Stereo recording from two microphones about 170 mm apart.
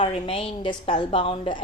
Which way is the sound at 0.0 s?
35° left (ahead or behind).